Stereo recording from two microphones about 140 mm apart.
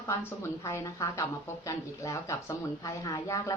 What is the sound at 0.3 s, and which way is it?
A woman's voice, 15° left (ahead or behind).